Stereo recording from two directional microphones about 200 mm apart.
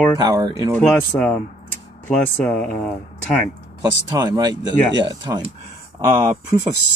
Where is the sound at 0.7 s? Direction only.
5° left (ahead or behind).